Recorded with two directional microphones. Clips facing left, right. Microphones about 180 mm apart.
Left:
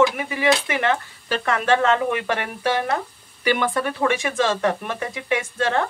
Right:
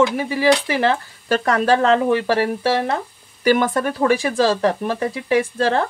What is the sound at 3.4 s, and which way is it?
Speech, 40° right (ahead or behind).